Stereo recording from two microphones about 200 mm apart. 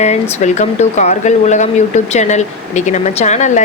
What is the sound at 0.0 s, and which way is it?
Speech, 35° left (ahead or behind).